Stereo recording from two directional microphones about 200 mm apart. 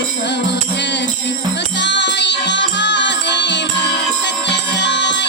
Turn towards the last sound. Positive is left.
turn(degrees=60)  # may be behind; listen again after turning